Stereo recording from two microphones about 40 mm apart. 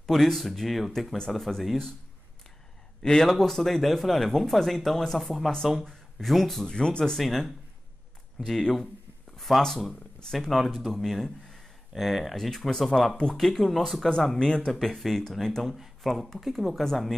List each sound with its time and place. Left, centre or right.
0.1 s speech: centre
3.0 s speech: centre
6.7 s speech: left
7.2 s speech: centre
8.4 s speech: centre
14.4 s speech: left
14.7 s speech: centre